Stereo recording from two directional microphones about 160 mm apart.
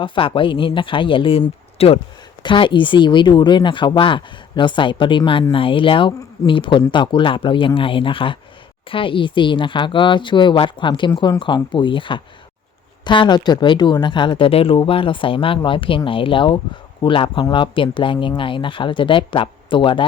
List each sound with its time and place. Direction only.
0.0 s speech: 30° left (ahead or behind)